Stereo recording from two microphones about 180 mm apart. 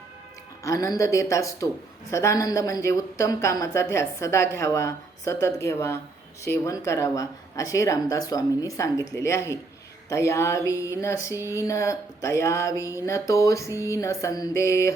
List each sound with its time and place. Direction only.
0.6 s speech: 20° left (ahead or behind)